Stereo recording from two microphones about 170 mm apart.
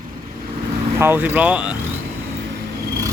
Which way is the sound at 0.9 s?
15° right (ahead or behind).